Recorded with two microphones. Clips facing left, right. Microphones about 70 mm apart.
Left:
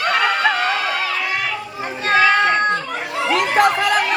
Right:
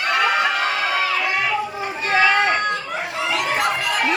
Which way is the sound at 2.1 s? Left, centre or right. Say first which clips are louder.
Left 3 dB; left.